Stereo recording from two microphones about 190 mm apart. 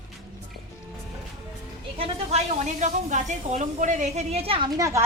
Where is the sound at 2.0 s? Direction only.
35° right (ahead or behind).